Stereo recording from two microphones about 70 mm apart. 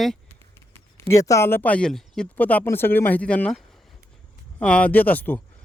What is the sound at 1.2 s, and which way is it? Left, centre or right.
Speech, left.